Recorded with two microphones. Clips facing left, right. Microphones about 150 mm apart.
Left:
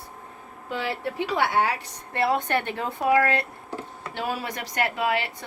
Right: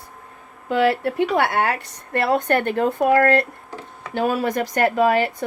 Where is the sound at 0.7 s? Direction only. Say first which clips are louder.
Right 10 dB; 60° right (ahead or behind); by 5.5 s 45° right (ahead or behind).